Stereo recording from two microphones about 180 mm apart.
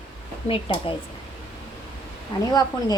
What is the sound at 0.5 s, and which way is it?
Speech, 30° left (ahead or behind).